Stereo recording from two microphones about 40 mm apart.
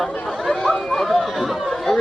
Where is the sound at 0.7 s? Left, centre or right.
Centre.